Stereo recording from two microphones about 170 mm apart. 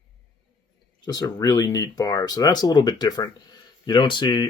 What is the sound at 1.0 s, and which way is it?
Speech, 20° left (ahead or behind).